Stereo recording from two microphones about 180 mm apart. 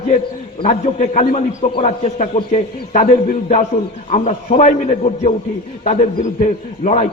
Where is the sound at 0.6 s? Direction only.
45° left (ahead or behind).